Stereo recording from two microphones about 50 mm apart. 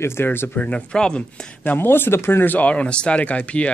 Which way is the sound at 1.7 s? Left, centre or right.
Left.